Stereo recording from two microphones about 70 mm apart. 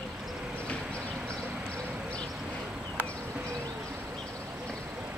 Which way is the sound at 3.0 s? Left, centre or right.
Centre.